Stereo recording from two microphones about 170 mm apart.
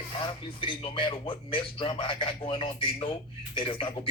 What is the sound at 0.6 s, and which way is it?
Speech, 30° left (ahead or behind).